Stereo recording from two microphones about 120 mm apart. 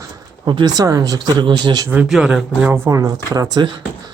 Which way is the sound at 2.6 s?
15° right (ahead or behind).